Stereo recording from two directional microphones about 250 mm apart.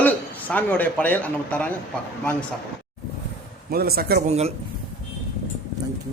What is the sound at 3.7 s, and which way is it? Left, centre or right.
Speech, right.